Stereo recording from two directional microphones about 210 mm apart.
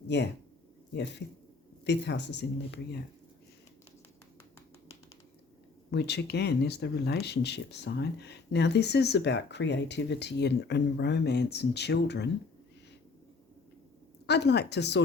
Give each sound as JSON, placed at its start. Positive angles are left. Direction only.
{"t": 0.1, "sound": "speech", "side_deg": 55}
{"t": 1.8, "sound": "speech", "side_deg": 55}
{"t": 5.9, "sound": "speech", "side_deg": 55}
{"t": 14.3, "sound": "speech", "side_deg": 55}